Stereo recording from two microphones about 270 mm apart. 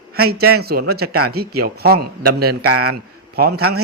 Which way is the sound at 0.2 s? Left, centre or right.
Right.